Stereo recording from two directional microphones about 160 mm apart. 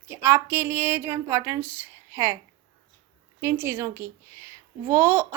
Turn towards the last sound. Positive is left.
turn(degrees=-15)  # may be behind; listen again after turning